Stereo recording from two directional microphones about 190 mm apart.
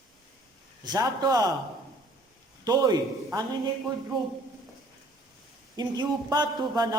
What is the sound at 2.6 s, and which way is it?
Speech, 20° right (ahead or behind).